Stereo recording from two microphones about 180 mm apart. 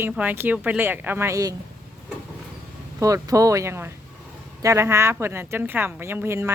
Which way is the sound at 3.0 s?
20° right (ahead or behind).